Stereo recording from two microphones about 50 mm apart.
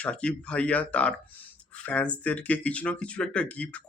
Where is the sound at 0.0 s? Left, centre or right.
Left.